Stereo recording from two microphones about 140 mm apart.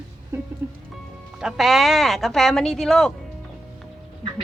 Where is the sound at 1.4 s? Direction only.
5° right (ahead or behind).